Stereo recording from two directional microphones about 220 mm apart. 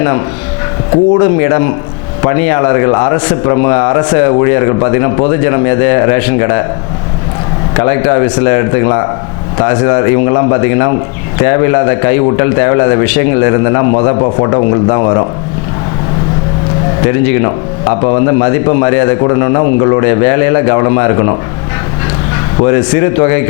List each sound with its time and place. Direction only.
1.1 s a man's voice: 25° left (ahead or behind)
7.8 s a man's voice: 20° left (ahead or behind)
13.1 s a man's voice: 10° left (ahead or behind)
13.5 s a man's voice: 20° left (ahead or behind)
17.4 s a man's voice: 25° left (ahead or behind)